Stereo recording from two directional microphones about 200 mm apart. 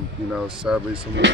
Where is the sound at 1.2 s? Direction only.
60° right (ahead or behind).